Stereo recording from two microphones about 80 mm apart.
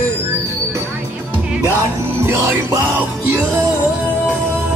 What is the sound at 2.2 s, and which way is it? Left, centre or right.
Music, right.